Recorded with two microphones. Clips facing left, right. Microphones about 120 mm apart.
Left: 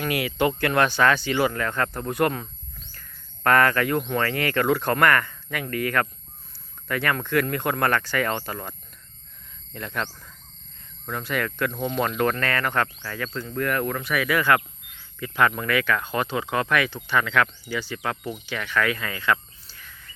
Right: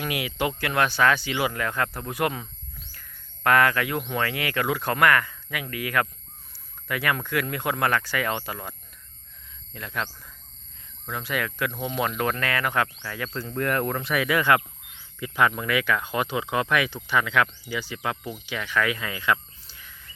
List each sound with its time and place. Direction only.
0.0 s speech: 15° right (ahead or behind)
9.7 s speech: 5° right (ahead or behind)